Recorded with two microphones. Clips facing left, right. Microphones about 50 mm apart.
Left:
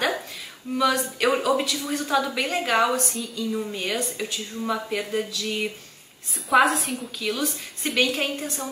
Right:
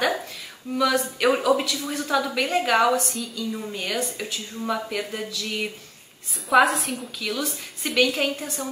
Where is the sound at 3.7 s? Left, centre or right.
Left.